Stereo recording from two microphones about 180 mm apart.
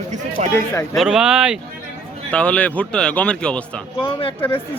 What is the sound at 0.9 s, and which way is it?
Speech, 5° right (ahead or behind).